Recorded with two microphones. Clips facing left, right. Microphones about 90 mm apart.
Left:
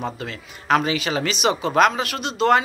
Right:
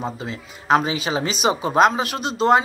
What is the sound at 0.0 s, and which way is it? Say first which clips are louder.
Speech: right 1 dB; 20° right (ahead or behind).